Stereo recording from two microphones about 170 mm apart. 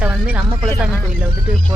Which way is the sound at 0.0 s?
10° right (ahead or behind).